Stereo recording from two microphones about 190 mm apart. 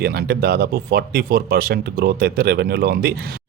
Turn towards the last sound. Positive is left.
turn(degrees=-55)  # may be behind; listen again after turning